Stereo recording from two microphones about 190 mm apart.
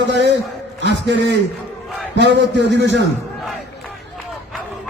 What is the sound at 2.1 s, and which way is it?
Speech, 65° right (ahead or behind).